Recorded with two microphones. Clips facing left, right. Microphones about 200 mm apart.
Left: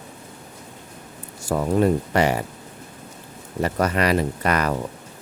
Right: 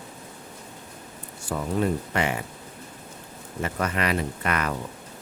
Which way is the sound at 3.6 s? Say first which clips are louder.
Left 6 dB; 40° left (ahead or behind).